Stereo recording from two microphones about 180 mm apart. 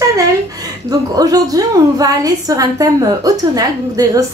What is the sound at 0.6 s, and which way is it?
A woman's voice, 20° right (ahead or behind).